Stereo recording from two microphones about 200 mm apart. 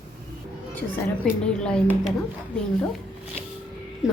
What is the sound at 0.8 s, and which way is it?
A woman's voice, 5° left (ahead or behind).